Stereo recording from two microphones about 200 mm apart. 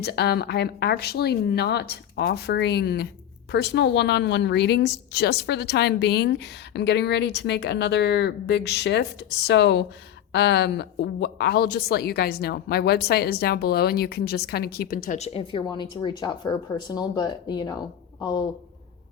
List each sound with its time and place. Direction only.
0.0 s a woman's voice: 55° left (ahead or behind); by 18.4 s 20° left (ahead or behind)